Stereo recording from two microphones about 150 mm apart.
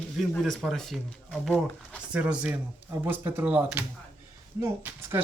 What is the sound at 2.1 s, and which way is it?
Speech, 10° right (ahead or behind).